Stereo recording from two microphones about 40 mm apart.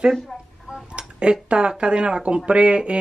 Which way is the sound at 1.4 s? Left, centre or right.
Right.